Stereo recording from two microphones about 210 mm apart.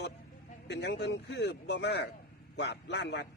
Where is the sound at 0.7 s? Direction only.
50° left (ahead or behind).